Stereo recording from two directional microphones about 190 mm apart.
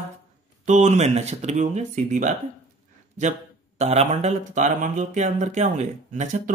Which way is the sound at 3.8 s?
35° right (ahead or behind).